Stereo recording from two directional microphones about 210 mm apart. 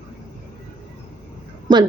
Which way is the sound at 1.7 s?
20° right (ahead or behind).